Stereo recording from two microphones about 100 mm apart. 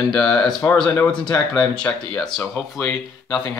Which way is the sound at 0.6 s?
30° left (ahead or behind).